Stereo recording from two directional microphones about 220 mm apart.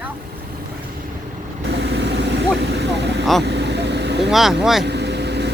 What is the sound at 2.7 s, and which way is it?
Vehicle, 50° right (ahead or behind).